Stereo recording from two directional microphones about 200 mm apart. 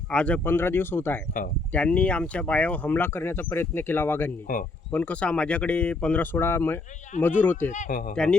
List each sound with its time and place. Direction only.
0.1 s speech: 5° left (ahead or behind)
4.5 s speech: 40° left (ahead or behind)
4.9 s speech: 5° left (ahead or behind)
7.7 s speech: 40° left (ahead or behind)
8.1 s speech: 5° left (ahead or behind)